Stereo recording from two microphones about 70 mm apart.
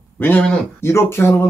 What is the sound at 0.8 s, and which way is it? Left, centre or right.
Speech, left.